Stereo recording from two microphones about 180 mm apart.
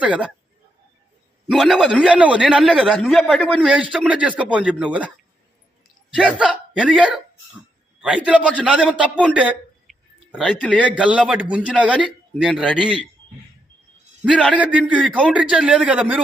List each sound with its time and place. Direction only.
0.0 s a man's voice: 5° right (ahead or behind)
1.5 s a man's voice: centre (ahead or behind)
6.1 s a man's voice: 5° right (ahead or behind)
9.3 s a sound: 10° right (ahead or behind)
10.8 s a man's voice: 5° right (ahead or behind)
14.6 s a man's voice: 10° right (ahead or behind)